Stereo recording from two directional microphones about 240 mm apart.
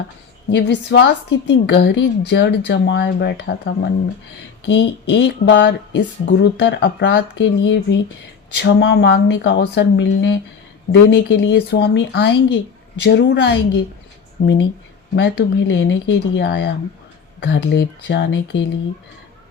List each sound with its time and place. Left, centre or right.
0.5 s speech: left
4.6 s speech: left